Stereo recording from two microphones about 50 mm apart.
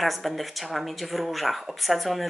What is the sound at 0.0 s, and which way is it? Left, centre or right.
Speech, centre.